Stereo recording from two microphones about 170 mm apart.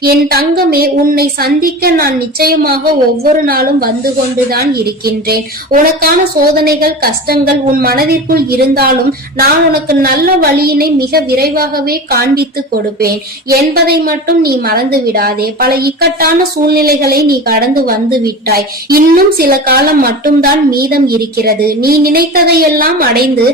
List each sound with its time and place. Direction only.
0.0 s a woman's voice: 65° right (ahead or behind)
13.5 s a woman's voice: 65° right (ahead or behind)